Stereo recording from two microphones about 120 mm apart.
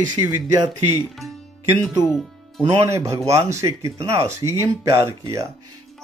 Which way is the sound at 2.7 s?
25° right (ahead or behind).